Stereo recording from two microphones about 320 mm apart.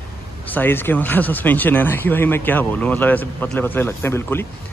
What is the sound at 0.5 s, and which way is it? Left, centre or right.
Speech, centre.